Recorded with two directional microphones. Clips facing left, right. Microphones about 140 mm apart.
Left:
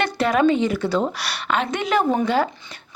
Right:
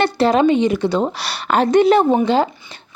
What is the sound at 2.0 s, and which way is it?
Speech, 25° right (ahead or behind).